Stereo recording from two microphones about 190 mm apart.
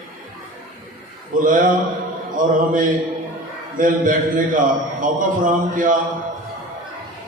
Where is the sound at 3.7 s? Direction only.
45° right (ahead or behind).